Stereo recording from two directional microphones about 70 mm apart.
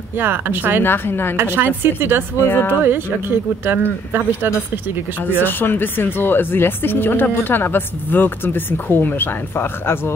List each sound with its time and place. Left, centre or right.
0.2 s speech: right
0.8 s speech: left
1.3 s speech: right
2.4 s speech: left
3.6 s speech: right
5.2 s speech: left